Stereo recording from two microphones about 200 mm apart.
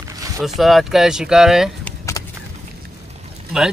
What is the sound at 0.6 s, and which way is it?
Speech, centre (ahead or behind).